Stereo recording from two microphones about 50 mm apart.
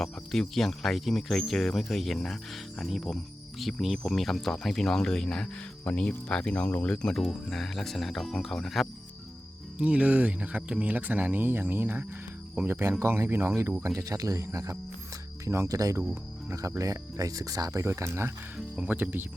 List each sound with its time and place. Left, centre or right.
0.0 s speech: centre
5.8 s speech: left
7.5 s speech: centre
9.7 s speech: right
13.8 s speech: right
15.4 s speech: right
16.5 s speech: right
17.7 s speech: right
18.5 s speech: right